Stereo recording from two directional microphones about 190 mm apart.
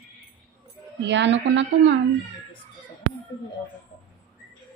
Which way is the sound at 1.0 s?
70° right (ahead or behind).